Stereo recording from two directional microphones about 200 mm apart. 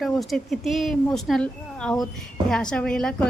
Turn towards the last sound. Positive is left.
turn(degrees=5)  # may be behind; listen again after turning